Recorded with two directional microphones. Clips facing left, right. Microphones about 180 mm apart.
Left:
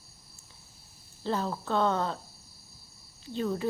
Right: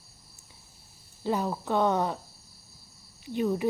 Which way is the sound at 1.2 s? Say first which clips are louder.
Right 2 dB; 15° right (ahead or behind).